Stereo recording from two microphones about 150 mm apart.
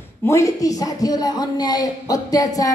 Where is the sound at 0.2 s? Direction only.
20° left (ahead or behind).